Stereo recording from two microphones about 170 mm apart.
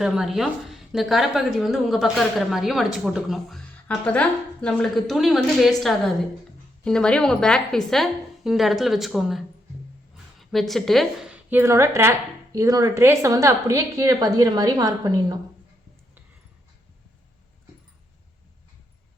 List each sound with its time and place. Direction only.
0.0 s a woman's voice: 5° right (ahead or behind)
10.5 s a woman's voice: centre (ahead or behind); by 15.4 s 20° right (ahead or behind)